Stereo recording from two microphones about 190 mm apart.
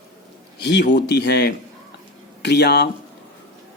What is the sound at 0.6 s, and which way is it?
Speech, 65° left (ahead or behind).